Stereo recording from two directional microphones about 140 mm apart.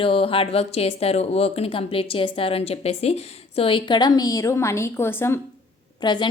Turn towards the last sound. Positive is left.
turn(degrees=30)  # may be behind; listen again after turning